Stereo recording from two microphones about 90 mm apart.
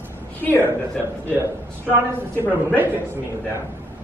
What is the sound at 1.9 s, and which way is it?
Speech, 20° right (ahead or behind).